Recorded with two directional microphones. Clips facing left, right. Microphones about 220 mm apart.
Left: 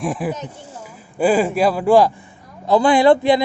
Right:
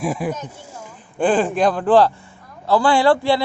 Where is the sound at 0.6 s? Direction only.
10° right (ahead or behind).